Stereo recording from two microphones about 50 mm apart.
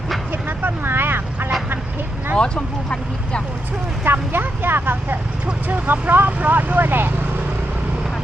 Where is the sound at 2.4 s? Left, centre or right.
Left.